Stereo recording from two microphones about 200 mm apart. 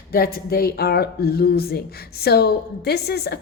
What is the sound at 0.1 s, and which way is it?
Speech, 50° left (ahead or behind).